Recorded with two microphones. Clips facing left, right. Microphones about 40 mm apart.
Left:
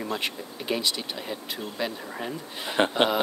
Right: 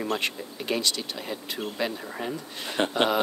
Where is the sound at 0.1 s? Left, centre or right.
Centre.